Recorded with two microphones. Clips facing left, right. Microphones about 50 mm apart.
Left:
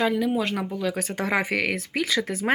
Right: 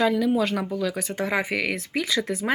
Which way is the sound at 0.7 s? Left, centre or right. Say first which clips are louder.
Right 1 dB; left.